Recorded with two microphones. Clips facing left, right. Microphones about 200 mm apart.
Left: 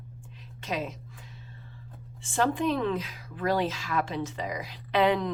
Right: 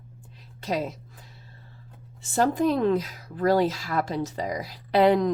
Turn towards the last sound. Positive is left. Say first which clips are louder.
# right 5 dB
turn(degrees=-40)  # may be behind; listen again after turning